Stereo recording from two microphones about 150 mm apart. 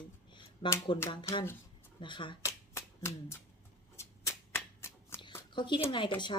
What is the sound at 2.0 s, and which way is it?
Speech, 30° left (ahead or behind).